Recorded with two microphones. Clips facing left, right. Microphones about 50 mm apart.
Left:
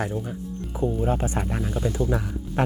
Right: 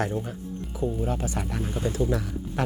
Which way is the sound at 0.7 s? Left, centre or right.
Centre.